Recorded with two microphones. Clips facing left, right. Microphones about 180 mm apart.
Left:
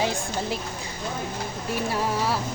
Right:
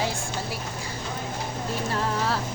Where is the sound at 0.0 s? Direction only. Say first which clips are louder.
Left 3 dB; 20° left (ahead or behind).